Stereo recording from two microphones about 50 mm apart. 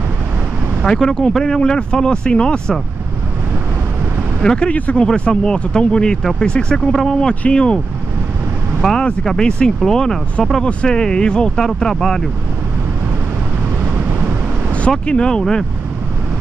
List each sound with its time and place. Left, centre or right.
0.8 s speech: centre
4.4 s speech: centre
4.6 s speech: left
6.9 s speech: centre
7.2 s speech: centre
8.8 s speech: centre
10.6 s speech: left
14.9 s speech: centre